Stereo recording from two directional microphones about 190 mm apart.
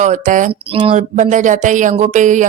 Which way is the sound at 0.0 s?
40° right (ahead or behind).